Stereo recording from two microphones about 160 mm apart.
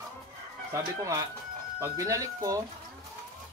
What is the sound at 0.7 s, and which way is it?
Speech, 20° right (ahead or behind).